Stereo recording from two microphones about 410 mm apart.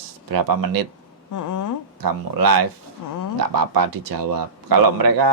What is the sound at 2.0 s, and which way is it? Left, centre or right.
Speech, right.